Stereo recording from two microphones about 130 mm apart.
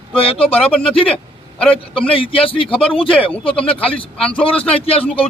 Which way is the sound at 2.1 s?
45° left (ahead or behind).